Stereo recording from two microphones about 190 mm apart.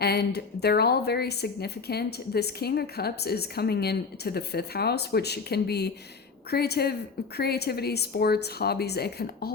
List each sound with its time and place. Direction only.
0.0 s a woman's voice: 55° left (ahead or behind)